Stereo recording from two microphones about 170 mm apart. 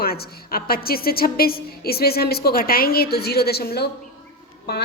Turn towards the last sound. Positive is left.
turn(degrees=70)  # may be behind; listen again after turning